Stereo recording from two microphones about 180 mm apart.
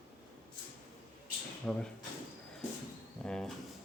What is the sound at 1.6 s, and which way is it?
Speech, 5° left (ahead or behind).